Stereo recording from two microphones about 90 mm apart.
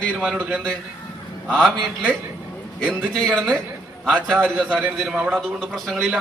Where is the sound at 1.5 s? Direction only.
5° left (ahead or behind).